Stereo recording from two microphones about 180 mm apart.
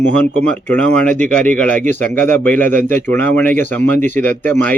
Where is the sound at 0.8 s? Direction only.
5° left (ahead or behind).